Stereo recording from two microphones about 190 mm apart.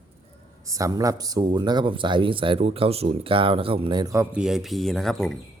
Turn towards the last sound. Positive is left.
turn(degrees=0)  # may be behind; listen again after turning